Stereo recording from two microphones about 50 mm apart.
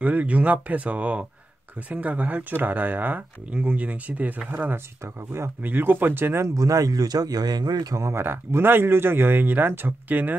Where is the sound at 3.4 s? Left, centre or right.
Right.